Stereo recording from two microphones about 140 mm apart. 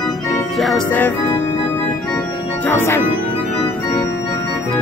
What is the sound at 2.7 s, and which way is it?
Speech, 15° left (ahead or behind).